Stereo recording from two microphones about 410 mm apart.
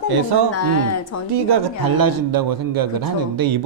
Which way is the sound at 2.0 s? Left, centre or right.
Right.